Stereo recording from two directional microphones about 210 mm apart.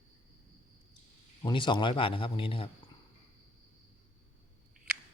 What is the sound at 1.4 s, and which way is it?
Speech, 20° left (ahead or behind).